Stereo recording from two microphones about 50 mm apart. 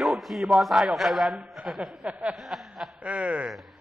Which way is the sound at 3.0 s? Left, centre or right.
Right.